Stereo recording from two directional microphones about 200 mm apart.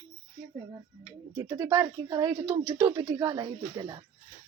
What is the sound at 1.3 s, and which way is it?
Speech, 15° right (ahead or behind).